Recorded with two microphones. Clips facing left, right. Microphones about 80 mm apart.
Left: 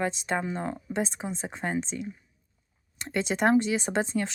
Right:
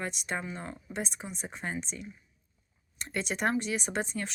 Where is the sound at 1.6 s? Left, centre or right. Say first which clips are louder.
Left 6 dB; left.